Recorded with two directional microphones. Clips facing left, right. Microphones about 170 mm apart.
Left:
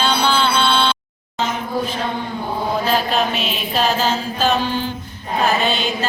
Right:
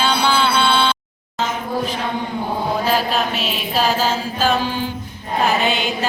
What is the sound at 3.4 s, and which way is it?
Mantra, 5° right (ahead or behind).